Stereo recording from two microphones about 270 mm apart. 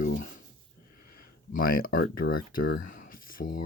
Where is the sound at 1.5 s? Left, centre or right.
Left.